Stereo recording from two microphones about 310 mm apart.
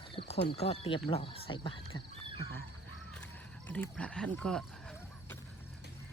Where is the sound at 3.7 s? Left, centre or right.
Centre.